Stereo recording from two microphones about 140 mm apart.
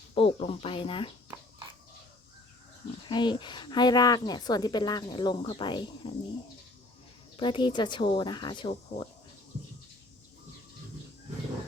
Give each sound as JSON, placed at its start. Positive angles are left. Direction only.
{"t": 0.1, "sound": "a woman's voice", "side_deg": 45}
{"t": 3.1, "sound": "a woman's voice", "side_deg": 35}
{"t": 7.3, "sound": "a woman's voice", "side_deg": 35}